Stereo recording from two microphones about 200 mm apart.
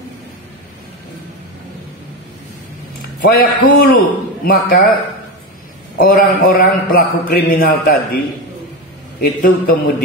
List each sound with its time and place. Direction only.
3.3 s a man's voice: 50° left (ahead or behind)
5.9 s a man's voice: 45° left (ahead or behind)
9.2 s a man's voice: 50° left (ahead or behind)